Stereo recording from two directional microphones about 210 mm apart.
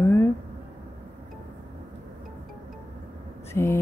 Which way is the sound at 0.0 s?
10° left (ahead or behind).